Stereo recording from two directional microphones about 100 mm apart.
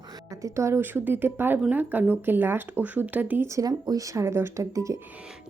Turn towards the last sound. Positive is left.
turn(degrees=-30)  # may be behind; listen again after turning